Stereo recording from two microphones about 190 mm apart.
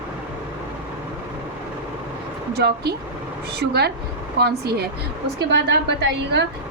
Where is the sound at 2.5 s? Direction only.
60° right (ahead or behind).